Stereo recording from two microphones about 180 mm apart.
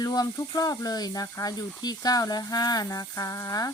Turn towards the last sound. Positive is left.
turn(degrees=20)  # may be behind; listen again after turning